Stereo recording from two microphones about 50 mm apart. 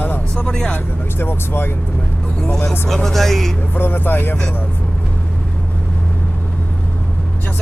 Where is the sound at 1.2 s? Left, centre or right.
Left.